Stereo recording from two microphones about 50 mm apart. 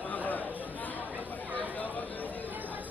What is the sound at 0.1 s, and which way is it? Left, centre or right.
Chatter, left.